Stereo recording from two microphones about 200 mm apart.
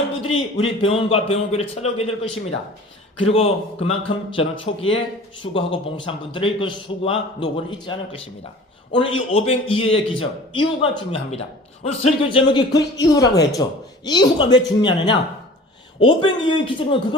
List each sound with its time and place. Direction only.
0.2 s a man's voice: 30° left (ahead or behind)
3.2 s a man's voice: 30° left (ahead or behind)